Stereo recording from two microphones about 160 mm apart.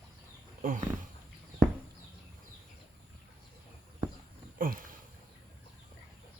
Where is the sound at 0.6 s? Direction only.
55° right (ahead or behind).